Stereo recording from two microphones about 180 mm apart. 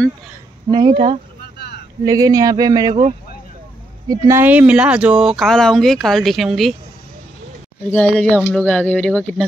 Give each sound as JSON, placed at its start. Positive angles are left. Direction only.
{"t": 0.7, "sound": "speech", "side_deg": -25}
{"t": 2.0, "sound": "speech", "side_deg": -20}
{"t": 2.9, "sound": "speech", "side_deg": -35}
{"t": 4.1, "sound": "speech", "side_deg": -15}
{"t": 7.9, "sound": "speech", "side_deg": 5}